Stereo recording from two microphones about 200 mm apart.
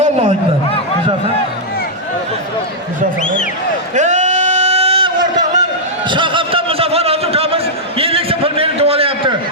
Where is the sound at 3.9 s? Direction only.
35° right (ahead or behind).